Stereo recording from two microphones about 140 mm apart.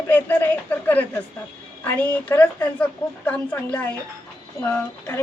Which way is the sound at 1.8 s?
10° left (ahead or behind).